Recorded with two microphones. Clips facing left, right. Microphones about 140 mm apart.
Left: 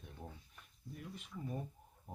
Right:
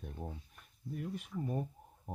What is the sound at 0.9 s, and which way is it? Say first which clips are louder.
Speech: right 9 dB; 50° right (ahead or behind).